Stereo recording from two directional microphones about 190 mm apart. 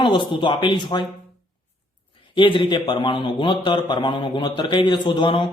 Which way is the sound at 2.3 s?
25° left (ahead or behind).